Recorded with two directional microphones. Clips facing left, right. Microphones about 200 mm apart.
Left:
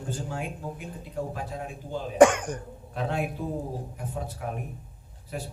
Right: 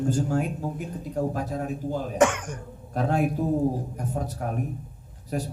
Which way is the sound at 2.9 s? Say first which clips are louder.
Right 6 dB; 45° right (ahead or behind).